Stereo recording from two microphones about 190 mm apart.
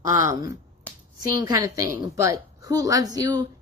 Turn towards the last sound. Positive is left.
turn(degrees=-20)  # may be behind; listen again after turning